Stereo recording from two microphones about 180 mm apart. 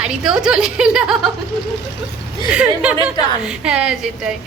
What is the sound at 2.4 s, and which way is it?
A woman's voice, 5° right (ahead or behind).